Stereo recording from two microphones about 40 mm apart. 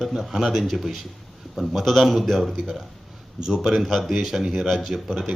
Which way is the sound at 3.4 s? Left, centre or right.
Centre.